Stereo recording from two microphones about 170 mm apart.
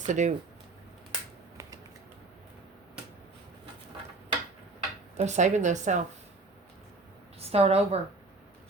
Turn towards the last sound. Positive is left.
turn(degrees=-35)  # may be behind; listen again after turning